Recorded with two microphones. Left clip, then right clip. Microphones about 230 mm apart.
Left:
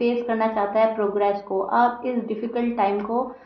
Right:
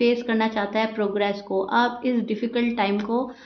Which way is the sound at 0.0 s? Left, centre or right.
Right.